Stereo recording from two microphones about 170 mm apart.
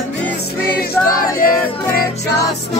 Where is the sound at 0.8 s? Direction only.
60° left (ahead or behind).